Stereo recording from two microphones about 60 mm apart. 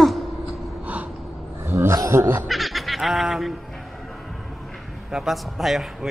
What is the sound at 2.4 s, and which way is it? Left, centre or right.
Fowl, centre.